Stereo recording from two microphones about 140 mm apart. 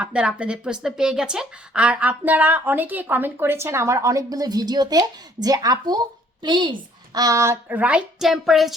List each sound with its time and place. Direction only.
0.0 s speech: 5° right (ahead or behind)